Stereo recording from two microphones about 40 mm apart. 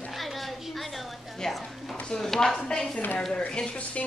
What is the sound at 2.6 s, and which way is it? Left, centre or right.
Speech, centre.